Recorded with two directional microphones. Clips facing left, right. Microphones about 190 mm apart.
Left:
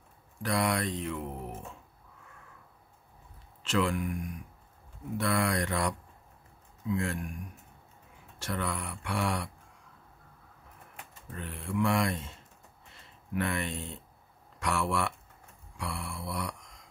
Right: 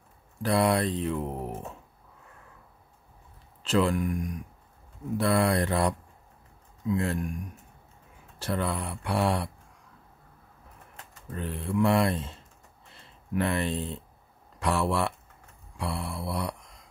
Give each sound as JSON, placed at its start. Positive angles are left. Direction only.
{"t": 0.4, "sound": "speech", "side_deg": -30}
{"t": 3.6, "sound": "speech", "side_deg": -35}
{"t": 8.4, "sound": "speech", "side_deg": -35}
{"t": 11.3, "sound": "speech", "side_deg": -35}